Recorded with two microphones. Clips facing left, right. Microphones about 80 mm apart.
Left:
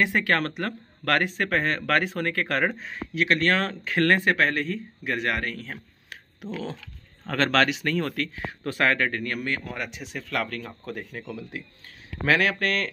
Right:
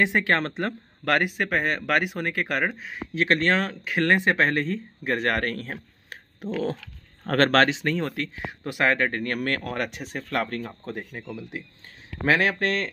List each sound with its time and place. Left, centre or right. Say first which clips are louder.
0.0 s speech: right 1 dB; right
2.6 s speech: left 1 dB; centre
3.2 s speech: right 1 dB; right
3.7 s speech: even; centre; by 9.2 s right
9.2 s speech: right 3 dB; right
9.5 s speech: right 3 dB; right